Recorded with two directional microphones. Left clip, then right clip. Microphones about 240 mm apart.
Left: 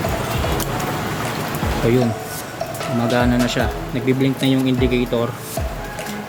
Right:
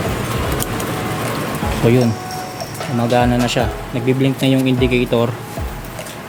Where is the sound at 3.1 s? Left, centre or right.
Centre.